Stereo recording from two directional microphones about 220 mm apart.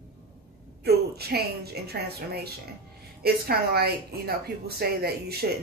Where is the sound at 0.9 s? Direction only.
45° right (ahead or behind).